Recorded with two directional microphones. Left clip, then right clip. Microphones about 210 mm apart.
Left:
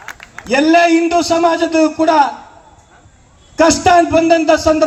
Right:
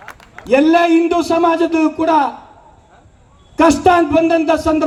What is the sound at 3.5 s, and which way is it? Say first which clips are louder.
A man's voice: left 1 dB; 55° right (ahead or behind).